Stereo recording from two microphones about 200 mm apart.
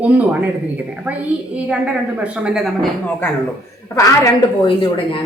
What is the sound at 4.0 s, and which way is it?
Speech, 15° left (ahead or behind).